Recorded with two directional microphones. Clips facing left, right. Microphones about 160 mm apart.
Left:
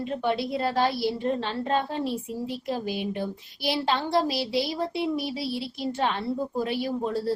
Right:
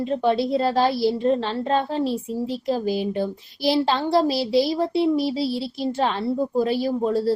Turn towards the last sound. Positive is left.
turn(degrees=-25)  # may be behind; listen again after turning